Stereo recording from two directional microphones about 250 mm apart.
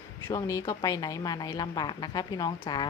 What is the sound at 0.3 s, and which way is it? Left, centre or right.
Speech, centre.